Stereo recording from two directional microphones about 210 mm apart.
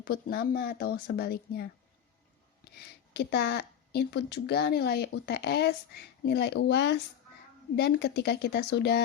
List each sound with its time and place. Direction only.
0.0 s speech: 45° left (ahead or behind)
3.1 s speech: 50° left (ahead or behind)